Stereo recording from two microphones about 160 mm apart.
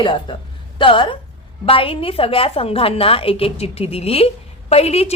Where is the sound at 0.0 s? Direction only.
30° left (ahead or behind).